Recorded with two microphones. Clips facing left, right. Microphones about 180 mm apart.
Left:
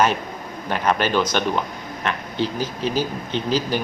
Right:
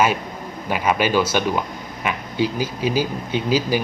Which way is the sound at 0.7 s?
10° right (ahead or behind).